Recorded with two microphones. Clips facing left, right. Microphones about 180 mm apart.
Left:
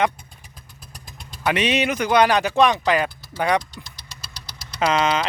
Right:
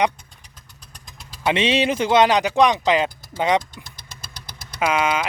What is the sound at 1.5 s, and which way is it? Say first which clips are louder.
Speech: right 2 dB; 25° right (ahead or behind).